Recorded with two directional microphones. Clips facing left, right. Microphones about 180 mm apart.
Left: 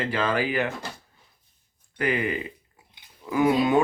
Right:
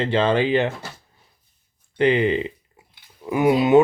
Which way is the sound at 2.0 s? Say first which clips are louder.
Right 8 dB; 25° right (ahead or behind).